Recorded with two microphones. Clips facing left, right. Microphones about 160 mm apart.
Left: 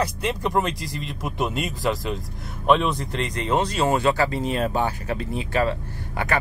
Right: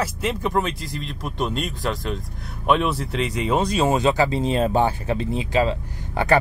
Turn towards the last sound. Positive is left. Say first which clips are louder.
# right 6 dB
turn(degrees=-30)  # may be behind; listen again after turning